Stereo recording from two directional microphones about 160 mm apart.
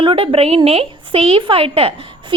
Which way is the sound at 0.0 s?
35° right (ahead or behind).